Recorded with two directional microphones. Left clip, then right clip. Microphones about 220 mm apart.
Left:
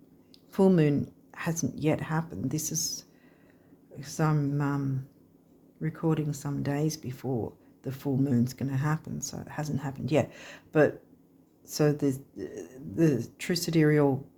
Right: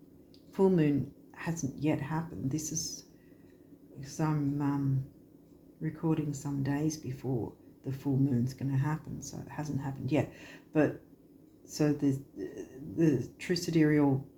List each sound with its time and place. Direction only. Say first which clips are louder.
0.5 s speech: left 3 dB; 45° left (ahead or behind)
5.8 s speech: left 3 dB; 45° left (ahead or behind)